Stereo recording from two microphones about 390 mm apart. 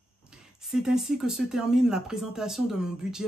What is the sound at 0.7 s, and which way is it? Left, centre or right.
Speech, centre.